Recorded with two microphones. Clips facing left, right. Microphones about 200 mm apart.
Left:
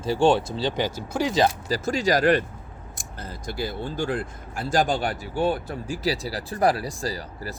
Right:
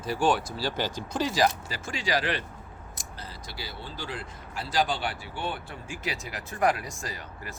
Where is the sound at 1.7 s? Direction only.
40° left (ahead or behind).